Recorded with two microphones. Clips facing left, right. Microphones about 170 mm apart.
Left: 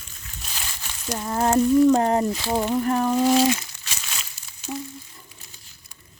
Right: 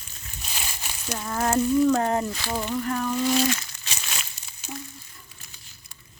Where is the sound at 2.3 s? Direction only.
20° left (ahead or behind).